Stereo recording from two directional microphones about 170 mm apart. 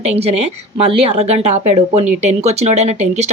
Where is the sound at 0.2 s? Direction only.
40° right (ahead or behind).